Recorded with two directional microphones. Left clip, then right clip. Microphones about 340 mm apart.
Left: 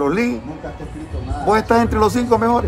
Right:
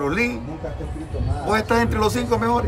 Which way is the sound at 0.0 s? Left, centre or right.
Centre.